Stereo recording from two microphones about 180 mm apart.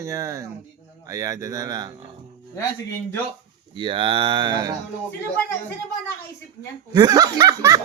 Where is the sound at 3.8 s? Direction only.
25° right (ahead or behind).